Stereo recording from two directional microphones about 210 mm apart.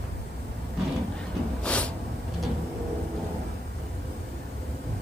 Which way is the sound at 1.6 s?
5° left (ahead or behind).